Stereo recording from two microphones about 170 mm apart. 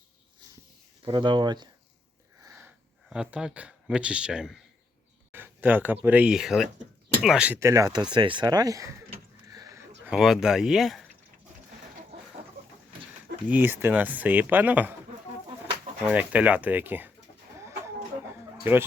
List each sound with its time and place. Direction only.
1.0 s speech: 25° right (ahead or behind)
2.4 s wheeze: 15° right (ahead or behind)
3.1 s speech: 5° right (ahead or behind); by 8.9 s 20° right (ahead or behind)
9.5 s a sound: 20° right (ahead or behind)
10.0 s speech: 5° right (ahead or behind)
13.5 s speech: 10° right (ahead or behind)
16.0 s speech: 10° right (ahead or behind)
17.6 s a sound: 15° right (ahead or behind)
18.6 s speech: 15° right (ahead or behind)